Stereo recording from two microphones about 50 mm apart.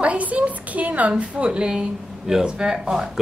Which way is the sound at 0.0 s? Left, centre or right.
Right.